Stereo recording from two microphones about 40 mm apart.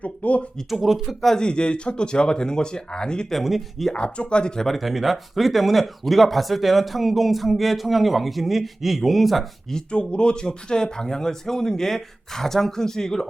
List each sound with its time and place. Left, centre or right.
0.0 s a sound: left
0.7 s speech: centre
1.4 s speech: left
3.4 s speech: centre
3.9 s speech: left
4.6 s speech: centre
9.7 s speech: left